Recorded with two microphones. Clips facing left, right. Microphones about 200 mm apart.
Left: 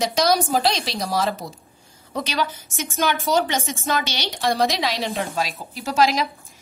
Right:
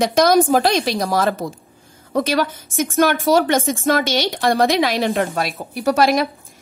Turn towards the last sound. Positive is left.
turn(degrees=-55)  # may be behind; listen again after turning